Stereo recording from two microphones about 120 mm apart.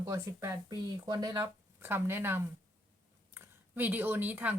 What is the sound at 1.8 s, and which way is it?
Speech, 20° right (ahead or behind).